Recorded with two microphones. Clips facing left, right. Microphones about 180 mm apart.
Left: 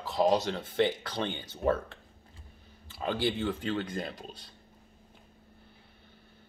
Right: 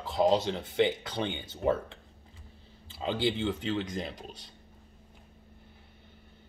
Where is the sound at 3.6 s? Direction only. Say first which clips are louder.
Even; 5° right (ahead or behind).